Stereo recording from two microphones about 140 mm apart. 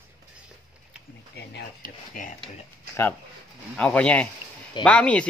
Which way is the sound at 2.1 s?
80° left.